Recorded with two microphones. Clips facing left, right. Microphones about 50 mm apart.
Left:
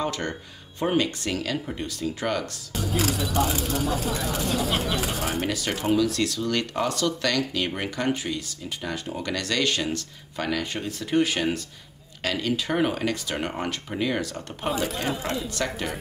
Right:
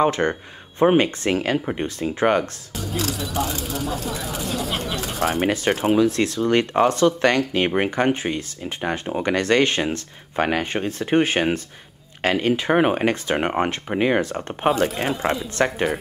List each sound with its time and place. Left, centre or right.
0.0 s speech: right
2.7 s speech: centre
5.9 s speech: right